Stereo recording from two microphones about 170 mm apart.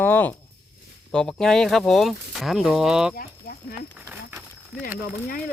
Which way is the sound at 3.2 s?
60° left (ahead or behind).